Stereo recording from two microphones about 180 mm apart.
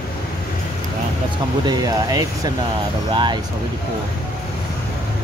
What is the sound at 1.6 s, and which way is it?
Speech, 20° right (ahead or behind).